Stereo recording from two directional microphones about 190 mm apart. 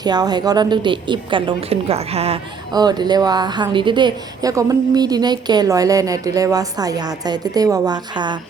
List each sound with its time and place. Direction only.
0.0 s speech: 20° right (ahead or behind)
2.7 s speech: 20° right (ahead or behind)